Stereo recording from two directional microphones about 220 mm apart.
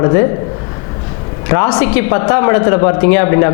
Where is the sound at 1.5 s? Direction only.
20° left (ahead or behind).